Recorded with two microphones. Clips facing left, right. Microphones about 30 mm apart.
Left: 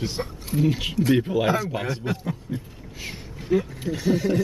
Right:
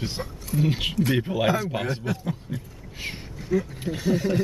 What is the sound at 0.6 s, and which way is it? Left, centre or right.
Speech, centre.